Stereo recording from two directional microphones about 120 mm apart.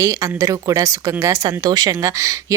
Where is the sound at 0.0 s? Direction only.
25° right (ahead or behind).